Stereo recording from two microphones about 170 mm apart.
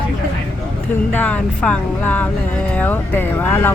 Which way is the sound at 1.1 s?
10° left (ahead or behind).